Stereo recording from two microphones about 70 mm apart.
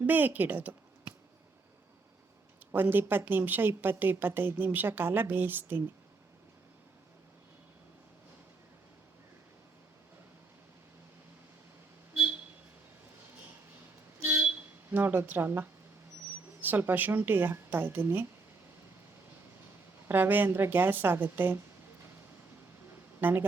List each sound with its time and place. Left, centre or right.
0.0 s speech: right
2.7 s a woman's voice: right
14.2 s vehicle: right
14.8 s a woman's voice: right
20.1 s a woman's voice: right
22.9 s a sound: right